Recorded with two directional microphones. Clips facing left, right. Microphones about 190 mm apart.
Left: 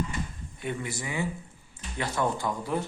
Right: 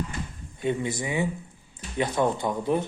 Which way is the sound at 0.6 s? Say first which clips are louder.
Right 6 dB; 20° right (ahead or behind).